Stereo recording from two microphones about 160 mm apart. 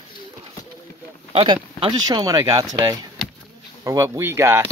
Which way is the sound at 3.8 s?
20° right (ahead or behind).